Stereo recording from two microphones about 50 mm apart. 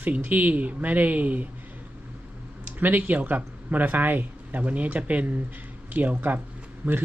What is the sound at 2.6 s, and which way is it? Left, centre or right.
Speech, right.